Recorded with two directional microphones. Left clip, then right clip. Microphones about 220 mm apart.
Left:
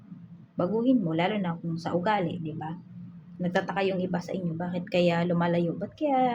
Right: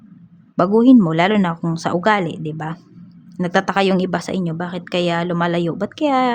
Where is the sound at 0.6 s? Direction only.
50° right (ahead or behind).